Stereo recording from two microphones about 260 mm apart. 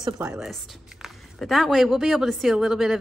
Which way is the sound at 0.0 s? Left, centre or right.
Centre.